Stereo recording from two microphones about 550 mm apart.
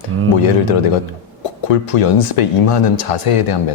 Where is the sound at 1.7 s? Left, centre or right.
Left.